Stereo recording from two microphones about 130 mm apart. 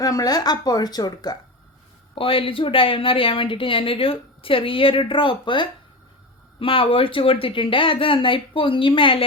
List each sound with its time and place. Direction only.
0.0 s a woman's voice: 30° left (ahead or behind)
2.1 s speech: 45° left (ahead or behind)